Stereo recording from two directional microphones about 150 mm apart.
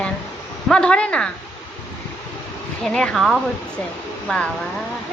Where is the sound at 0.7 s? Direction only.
5° left (ahead or behind).